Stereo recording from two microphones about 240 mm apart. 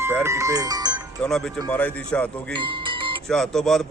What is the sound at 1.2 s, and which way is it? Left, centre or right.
Speech, centre.